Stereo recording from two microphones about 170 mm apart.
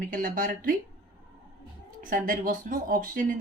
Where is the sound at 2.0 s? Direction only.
50° right (ahead or behind).